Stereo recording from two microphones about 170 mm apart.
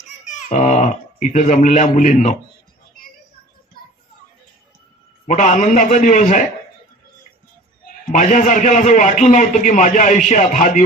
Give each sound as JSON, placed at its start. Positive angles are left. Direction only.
{"t": 0.3, "sound": "speech", "side_deg": 45}
{"t": 5.2, "sound": "a man's voice", "side_deg": 45}
{"t": 8.1, "sound": "a man's voice", "side_deg": 45}